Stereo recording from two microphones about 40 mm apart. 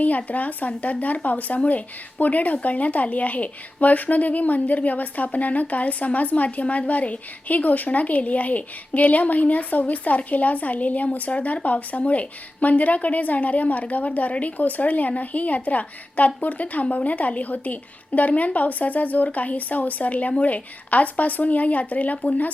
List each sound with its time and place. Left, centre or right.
0.3 s speech: left